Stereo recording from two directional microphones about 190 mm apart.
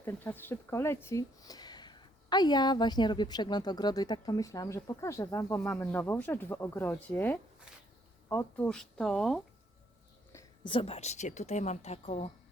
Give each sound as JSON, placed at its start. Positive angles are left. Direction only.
{"t": 0.0, "sound": "speech", "side_deg": 10}
{"t": 10.3, "sound": "a woman's voice", "side_deg": 25}